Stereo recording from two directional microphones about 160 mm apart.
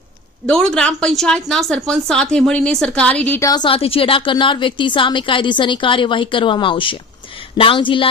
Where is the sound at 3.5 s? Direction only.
30° left (ahead or behind).